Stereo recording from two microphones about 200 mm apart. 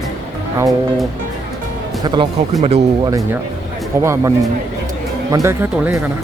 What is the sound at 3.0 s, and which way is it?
Speech, 15° right (ahead or behind).